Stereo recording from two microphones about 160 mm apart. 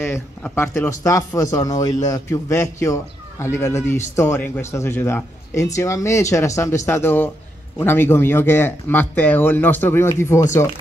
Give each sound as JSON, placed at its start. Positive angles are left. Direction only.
{"t": 0.0, "sound": "speech", "side_deg": 15}